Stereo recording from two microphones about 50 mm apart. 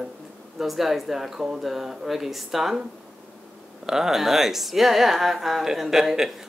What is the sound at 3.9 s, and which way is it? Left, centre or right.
Speech, centre.